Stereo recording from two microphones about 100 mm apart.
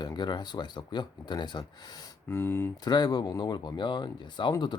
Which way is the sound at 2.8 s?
40° left (ahead or behind).